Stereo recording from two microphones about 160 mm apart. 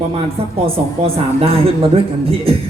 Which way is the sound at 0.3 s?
35° right (ahead or behind).